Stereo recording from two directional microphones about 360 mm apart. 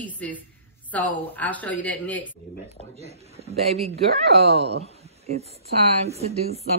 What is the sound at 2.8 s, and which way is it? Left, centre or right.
Speech, centre.